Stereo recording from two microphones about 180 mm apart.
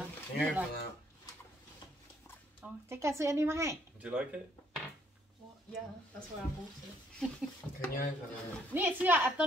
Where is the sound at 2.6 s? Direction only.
15° right (ahead or behind).